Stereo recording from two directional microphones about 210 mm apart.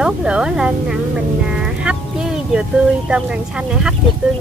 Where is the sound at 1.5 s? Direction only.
5° right (ahead or behind).